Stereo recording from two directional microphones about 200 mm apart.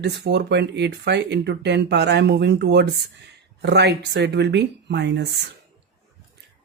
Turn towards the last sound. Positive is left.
turn(degrees=-60)  # may be behind; listen again after turning